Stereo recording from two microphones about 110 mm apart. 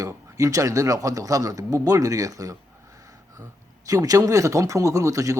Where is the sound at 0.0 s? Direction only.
30° right (ahead or behind).